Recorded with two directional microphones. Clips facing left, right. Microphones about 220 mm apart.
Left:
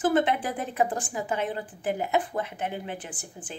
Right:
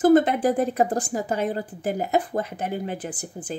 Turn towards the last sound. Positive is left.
turn(degrees=-40)  # may be behind; listen again after turning